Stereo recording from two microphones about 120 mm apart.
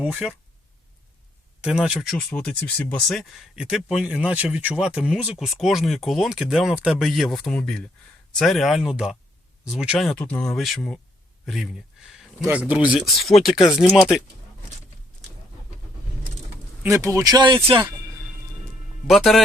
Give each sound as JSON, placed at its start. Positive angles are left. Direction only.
{"t": 0.0, "sound": "speech", "side_deg": -5}
{"t": 1.6, "sound": "speech", "side_deg": -5}
{"t": 2.3, "sound": "speech", "side_deg": 10}
{"t": 11.4, "sound": "speech", "side_deg": 0}
{"t": 13.1, "sound": "speech", "side_deg": 0}
{"t": 16.8, "sound": "speech", "side_deg": -25}
{"t": 19.0, "sound": "speech", "side_deg": 0}